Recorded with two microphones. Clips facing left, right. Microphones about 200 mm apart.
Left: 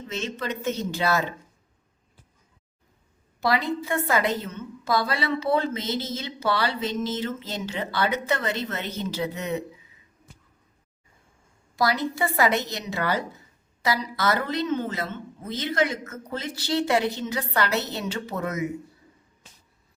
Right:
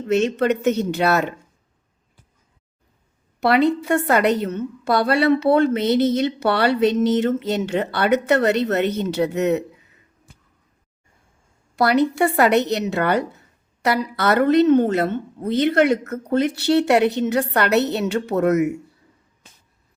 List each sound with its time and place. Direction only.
0.0 s a woman's voice: 65° right (ahead or behind)
3.4 s a woman's voice: 65° right (ahead or behind)
11.8 s a woman's voice: 65° right (ahead or behind)